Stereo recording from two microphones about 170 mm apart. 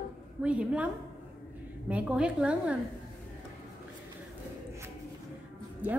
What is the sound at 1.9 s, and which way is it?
Speech, 5° right (ahead or behind).